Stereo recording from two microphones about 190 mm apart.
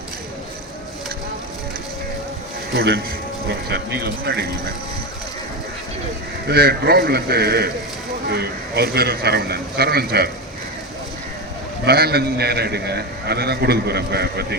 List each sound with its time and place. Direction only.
2.7 s a man's voice: 60° right (ahead or behind)
6.5 s a man's voice: 55° right (ahead or behind)
11.9 s a man's voice: 55° right (ahead or behind)